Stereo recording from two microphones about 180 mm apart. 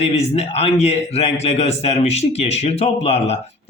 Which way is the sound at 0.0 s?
35° left (ahead or behind).